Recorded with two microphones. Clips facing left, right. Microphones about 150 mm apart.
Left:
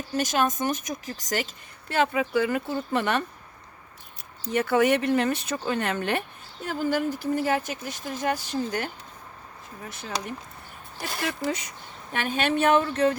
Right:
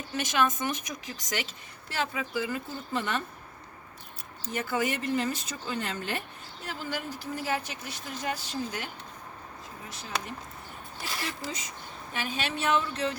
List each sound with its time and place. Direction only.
0.1 s speech: 40° left (ahead or behind)
1.9 s speech: 60° left (ahead or behind)
4.5 s speech: 70° left (ahead or behind)
6.7 s speech: 50° left (ahead or behind)
11.0 s speech: 55° left (ahead or behind)